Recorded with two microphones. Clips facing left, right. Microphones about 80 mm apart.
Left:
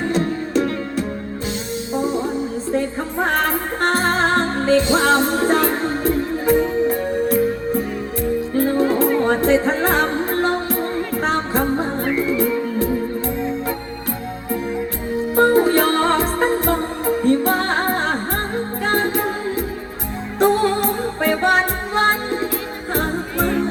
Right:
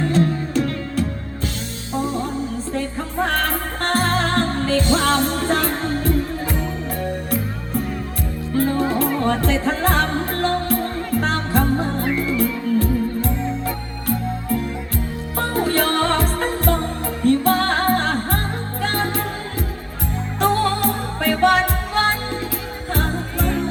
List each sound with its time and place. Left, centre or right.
0.0 s music: left
8.5 s music: centre
12.0 s music: centre
15.4 s music: left